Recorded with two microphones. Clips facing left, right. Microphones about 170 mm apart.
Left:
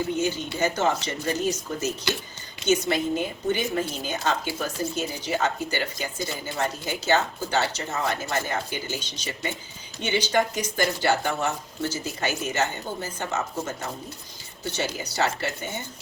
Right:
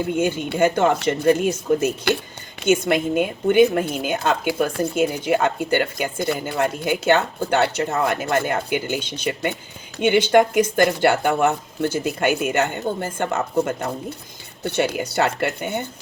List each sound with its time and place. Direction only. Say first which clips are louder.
0.2 s a woman's voice: right 6 dB; 55° right (ahead or behind)